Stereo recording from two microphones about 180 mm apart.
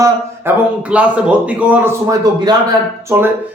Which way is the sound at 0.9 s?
5° right (ahead or behind).